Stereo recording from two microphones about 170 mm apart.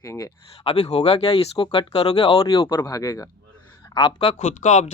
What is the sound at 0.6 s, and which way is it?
Speech, 40° left (ahead or behind).